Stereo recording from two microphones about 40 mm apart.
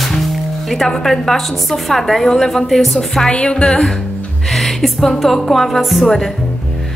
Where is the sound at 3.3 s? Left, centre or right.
Left.